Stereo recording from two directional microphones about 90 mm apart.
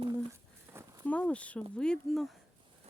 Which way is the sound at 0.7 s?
30° right (ahead or behind).